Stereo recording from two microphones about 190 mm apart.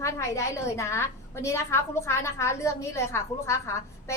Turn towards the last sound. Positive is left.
turn(degrees=15)  # may be behind; listen again after turning